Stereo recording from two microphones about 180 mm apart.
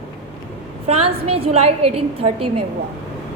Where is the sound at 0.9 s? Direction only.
35° right (ahead or behind).